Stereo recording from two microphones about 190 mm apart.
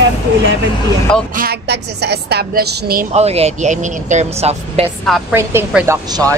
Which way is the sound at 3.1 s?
35° right (ahead or behind).